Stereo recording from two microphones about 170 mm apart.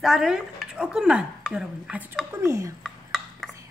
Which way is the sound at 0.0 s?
5° right (ahead or behind).